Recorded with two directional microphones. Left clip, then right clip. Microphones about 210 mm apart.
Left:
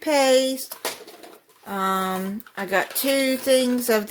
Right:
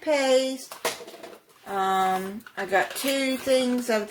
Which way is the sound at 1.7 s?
50° left (ahead or behind).